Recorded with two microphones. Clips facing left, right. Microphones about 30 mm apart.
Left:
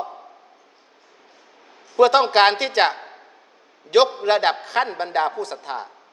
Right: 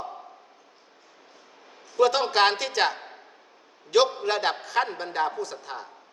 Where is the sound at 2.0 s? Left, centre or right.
Left.